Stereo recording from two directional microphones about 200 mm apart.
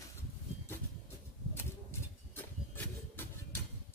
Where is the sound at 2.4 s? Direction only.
10° left (ahead or behind).